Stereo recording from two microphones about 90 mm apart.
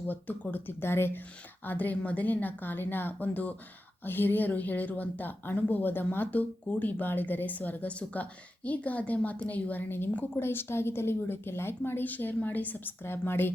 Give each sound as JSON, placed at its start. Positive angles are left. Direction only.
{"t": 0.1, "sound": "a woman's voice", "side_deg": 20}